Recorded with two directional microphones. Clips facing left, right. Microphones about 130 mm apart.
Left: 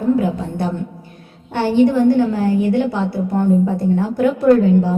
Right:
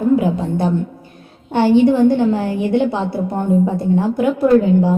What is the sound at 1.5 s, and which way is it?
A woman's voice, 20° right (ahead or behind).